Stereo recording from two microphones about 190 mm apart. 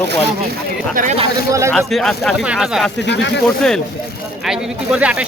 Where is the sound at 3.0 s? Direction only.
65° left (ahead or behind).